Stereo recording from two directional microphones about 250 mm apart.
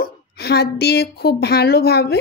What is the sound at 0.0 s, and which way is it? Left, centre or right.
A woman's voice, left.